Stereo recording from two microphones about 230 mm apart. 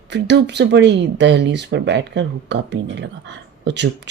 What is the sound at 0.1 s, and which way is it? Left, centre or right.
Speech, right.